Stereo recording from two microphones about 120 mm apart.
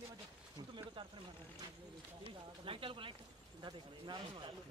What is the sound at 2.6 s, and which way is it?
Speech, 45° right (ahead or behind).